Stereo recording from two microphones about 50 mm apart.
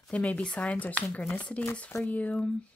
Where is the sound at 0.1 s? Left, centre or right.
Left.